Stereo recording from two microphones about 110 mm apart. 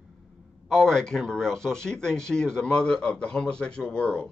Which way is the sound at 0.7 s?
5° left (ahead or behind).